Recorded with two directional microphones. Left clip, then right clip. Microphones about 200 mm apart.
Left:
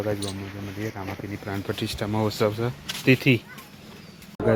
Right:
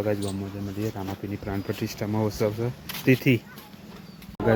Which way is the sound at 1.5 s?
15° right (ahead or behind).